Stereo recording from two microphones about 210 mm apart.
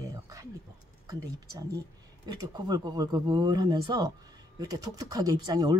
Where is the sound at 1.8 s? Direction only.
20° right (ahead or behind).